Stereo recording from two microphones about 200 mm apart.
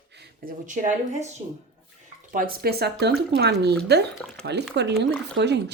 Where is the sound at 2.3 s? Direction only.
50° right (ahead or behind).